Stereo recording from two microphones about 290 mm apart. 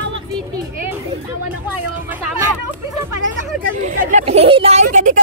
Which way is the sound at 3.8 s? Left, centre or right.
Right.